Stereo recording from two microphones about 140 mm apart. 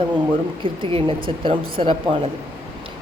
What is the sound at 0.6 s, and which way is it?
Speech, 35° right (ahead or behind).